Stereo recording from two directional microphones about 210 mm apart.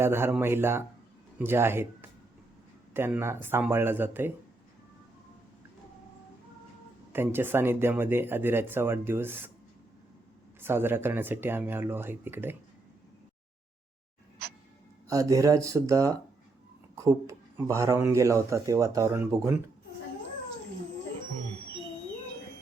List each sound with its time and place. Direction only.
0.0 s speech: 10° right (ahead or behind)
7.1 s speech: 10° right (ahead or behind)
10.6 s speech: 10° right (ahead or behind)
14.4 s a sound: 50° right (ahead or behind)
15.1 s speech: 15° right (ahead or behind)